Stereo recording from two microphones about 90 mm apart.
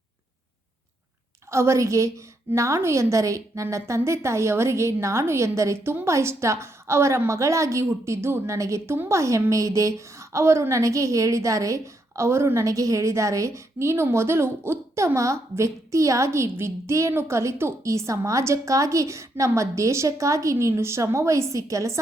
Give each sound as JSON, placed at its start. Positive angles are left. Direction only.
{"t": 1.5, "sound": "a woman's voice", "side_deg": -30}